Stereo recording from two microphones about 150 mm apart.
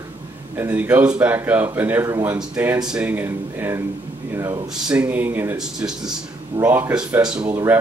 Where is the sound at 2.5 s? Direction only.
10° right (ahead or behind).